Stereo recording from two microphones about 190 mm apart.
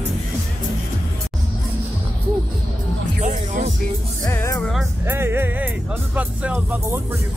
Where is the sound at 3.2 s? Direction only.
40° right (ahead or behind).